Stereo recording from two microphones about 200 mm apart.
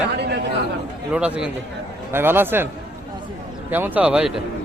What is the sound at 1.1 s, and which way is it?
Speech, 5° right (ahead or behind).